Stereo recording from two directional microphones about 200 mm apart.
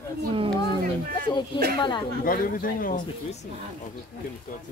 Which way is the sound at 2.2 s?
45° left (ahead or behind).